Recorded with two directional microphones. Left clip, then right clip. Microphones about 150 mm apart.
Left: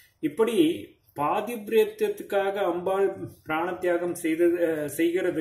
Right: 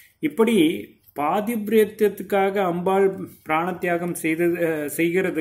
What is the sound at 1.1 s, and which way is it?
Speech, 30° right (ahead or behind).